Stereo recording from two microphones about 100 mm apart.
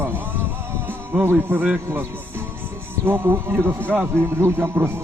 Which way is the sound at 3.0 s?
20° right (ahead or behind).